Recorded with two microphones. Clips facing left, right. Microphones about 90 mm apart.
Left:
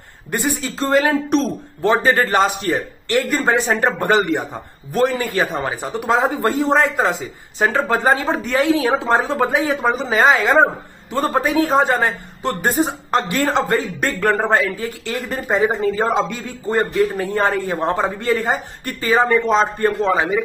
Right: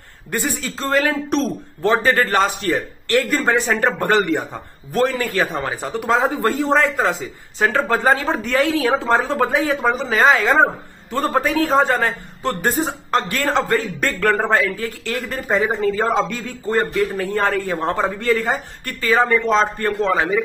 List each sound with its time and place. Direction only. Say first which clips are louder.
0.3 s speech: left 2 dB; 10° left (ahead or behind)
6.4 s speech: left 1 dB; 15° left (ahead or behind)
9.8 s speech: even; 20° left (ahead or behind)
10.1 s speech: left 1 dB; 10° left (ahead or behind)